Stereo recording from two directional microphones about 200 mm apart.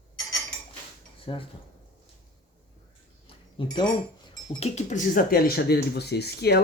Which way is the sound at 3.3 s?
25° left (ahead or behind).